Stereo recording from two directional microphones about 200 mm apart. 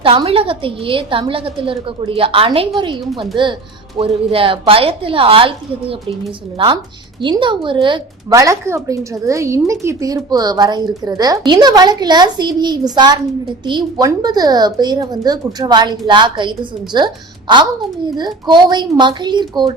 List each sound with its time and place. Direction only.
0.0 s a woman's voice: 30° right (ahead or behind)